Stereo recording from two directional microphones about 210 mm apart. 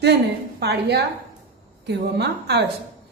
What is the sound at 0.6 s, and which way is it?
A woman's voice, 50° right (ahead or behind).